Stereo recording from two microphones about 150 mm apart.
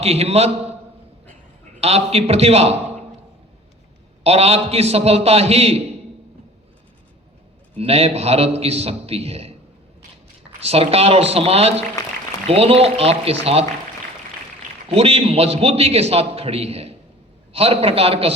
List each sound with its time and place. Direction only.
0.0 s a man's voice: 45° right (ahead or behind)
1.8 s a man's voice: 45° right (ahead or behind)
4.2 s a man's voice: 45° right (ahead or behind)
7.8 s a man's voice: 40° right (ahead or behind)
10.6 s a man's voice: 40° right (ahead or behind)
14.8 s a man's voice: 40° right (ahead or behind)